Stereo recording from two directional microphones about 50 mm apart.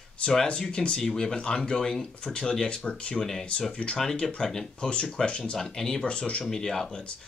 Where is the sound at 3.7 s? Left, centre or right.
Left.